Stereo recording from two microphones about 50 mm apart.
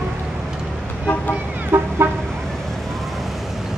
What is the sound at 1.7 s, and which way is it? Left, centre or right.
Vehicle, right.